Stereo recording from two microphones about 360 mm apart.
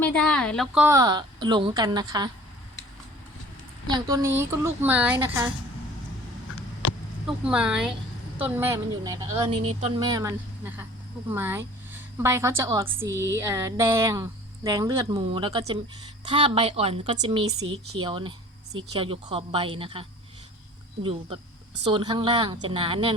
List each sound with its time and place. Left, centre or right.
0.0 s a woman's voice: centre
3.8 s a woman's voice: centre
6.8 s a sound: left
7.3 s a woman's voice: centre